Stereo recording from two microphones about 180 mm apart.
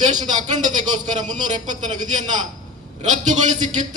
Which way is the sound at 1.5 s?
45° right (ahead or behind).